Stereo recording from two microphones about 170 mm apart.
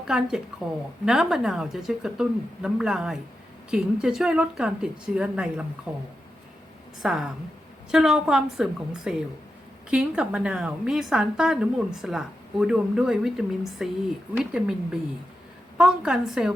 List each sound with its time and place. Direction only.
0.1 s a woman's voice: centre (ahead or behind)
15.8 s a woman's voice: 5° right (ahead or behind)